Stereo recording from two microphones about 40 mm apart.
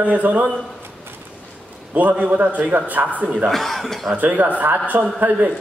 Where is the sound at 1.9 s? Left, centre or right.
Right.